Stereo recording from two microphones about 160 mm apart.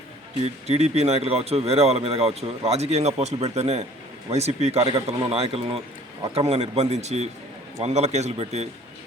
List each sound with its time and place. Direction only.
0.3 s a man's voice: 40° right (ahead or behind)